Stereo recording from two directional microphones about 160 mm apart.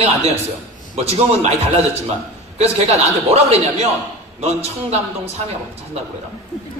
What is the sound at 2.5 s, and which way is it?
A man's voice, 45° right (ahead or behind).